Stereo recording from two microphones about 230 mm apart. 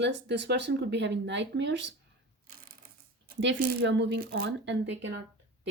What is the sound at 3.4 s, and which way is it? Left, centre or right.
Speech, right.